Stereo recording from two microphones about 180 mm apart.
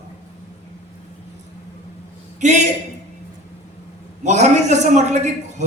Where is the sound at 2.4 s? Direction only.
40° right (ahead or behind).